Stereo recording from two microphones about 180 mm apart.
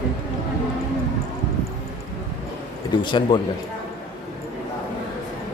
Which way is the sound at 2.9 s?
25° left (ahead or behind).